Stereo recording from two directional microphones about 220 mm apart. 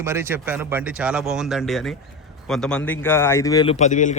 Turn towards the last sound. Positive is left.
turn(degrees=35)  # may be behind; listen again after turning